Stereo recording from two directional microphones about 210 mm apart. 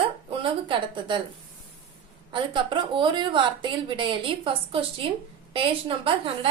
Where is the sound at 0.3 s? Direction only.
25° right (ahead or behind).